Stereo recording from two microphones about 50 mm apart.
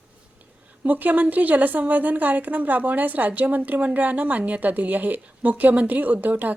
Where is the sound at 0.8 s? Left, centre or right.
Right.